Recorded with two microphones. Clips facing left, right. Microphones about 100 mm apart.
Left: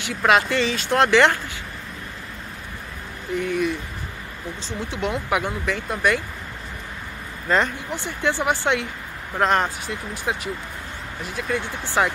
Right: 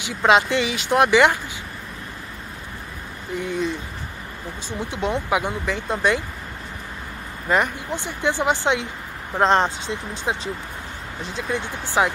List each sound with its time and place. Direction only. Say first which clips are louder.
0.0 s speech: right 1 dB; 20° right (ahead or behind)
3.3 s speech: left 2 dB; 20° right (ahead or behind)
7.4 s speech: even; 15° right (ahead or behind)